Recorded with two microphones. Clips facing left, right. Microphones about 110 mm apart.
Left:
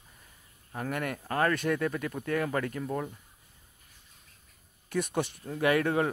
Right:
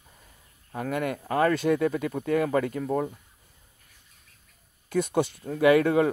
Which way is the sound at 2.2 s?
10° right (ahead or behind).